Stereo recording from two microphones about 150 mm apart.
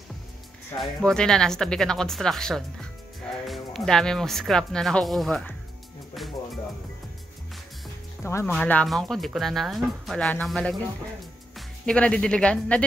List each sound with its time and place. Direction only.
0.7 s speech: 5° left (ahead or behind)
6.1 s music: centre (ahead or behind)
8.2 s speech: 15° left (ahead or behind)